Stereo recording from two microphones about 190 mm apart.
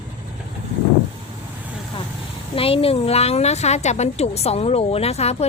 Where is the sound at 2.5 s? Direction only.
30° left (ahead or behind).